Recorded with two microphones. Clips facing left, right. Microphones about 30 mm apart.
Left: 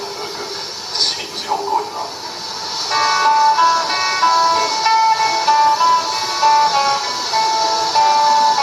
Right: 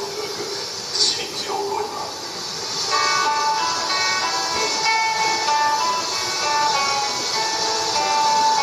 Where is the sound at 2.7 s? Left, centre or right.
Left.